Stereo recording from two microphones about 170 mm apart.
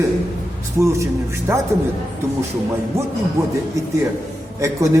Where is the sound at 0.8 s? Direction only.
15° right (ahead or behind).